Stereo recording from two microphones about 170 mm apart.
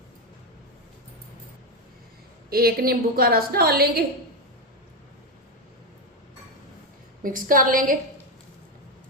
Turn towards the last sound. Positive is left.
turn(degrees=-55)  # may be behind; listen again after turning